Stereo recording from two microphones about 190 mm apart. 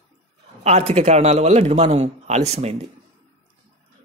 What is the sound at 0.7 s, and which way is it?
Speech, 35° right (ahead or behind).